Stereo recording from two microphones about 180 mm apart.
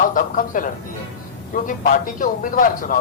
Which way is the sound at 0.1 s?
50° left (ahead or behind).